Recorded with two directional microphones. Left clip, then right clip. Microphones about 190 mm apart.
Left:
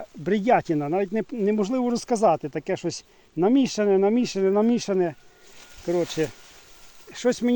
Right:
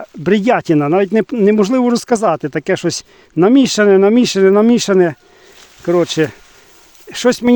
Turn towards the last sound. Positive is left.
turn(degrees=-45)  # may be behind; listen again after turning